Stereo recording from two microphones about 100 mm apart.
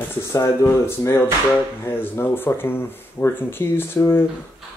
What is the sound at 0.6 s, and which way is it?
Speech, 30° left (ahead or behind).